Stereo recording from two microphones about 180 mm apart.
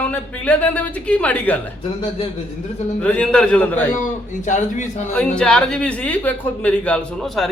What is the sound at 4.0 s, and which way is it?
Speech, 45° left (ahead or behind).